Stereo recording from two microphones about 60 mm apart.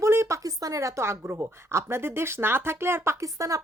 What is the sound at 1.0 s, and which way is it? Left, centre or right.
Speech, right.